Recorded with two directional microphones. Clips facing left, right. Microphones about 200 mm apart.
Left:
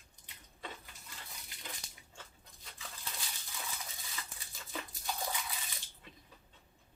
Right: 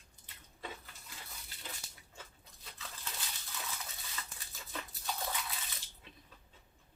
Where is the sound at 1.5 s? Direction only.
15° left (ahead or behind).